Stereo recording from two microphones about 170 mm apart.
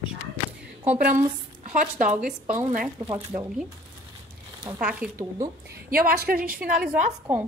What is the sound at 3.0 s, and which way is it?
Speech, 30° right (ahead or behind).